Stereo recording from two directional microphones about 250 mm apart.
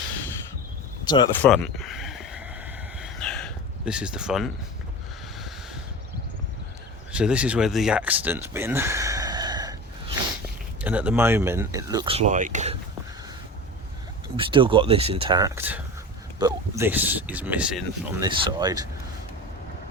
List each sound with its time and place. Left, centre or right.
1.0 s speech: centre
1.5 s speech: centre
3.0 s a sound: centre
7.1 s speech: centre
10.8 s speech: centre; by 12.7 s right
14.3 s speech: centre
18.2 s speech: centre